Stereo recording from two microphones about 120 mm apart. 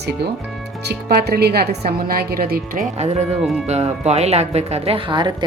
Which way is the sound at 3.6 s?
65° right (ahead or behind).